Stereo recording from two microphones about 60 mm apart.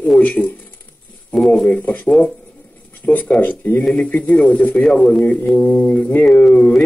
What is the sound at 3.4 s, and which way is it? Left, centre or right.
A man's voice, left.